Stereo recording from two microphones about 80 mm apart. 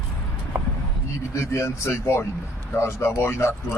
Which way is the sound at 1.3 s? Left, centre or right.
Left.